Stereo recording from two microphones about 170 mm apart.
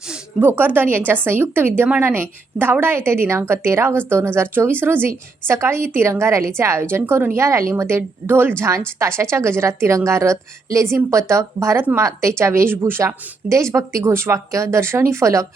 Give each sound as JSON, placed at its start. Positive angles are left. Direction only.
{"t": 0.1, "sound": "speech", "side_deg": -10}